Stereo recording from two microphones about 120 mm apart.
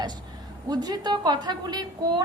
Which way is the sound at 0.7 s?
35° right (ahead or behind).